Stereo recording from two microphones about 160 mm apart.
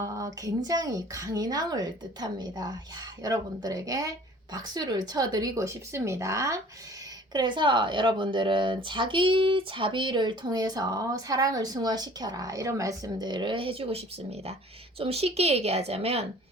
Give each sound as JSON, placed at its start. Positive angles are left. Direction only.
{"t": 0.4, "sound": "speech", "side_deg": -25}
{"t": 7.3, "sound": "a woman's voice", "side_deg": -30}